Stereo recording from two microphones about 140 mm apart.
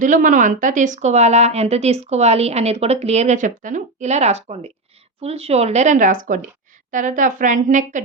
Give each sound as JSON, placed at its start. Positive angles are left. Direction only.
{"t": 0.0, "sound": "a woman's voice", "side_deg": -70}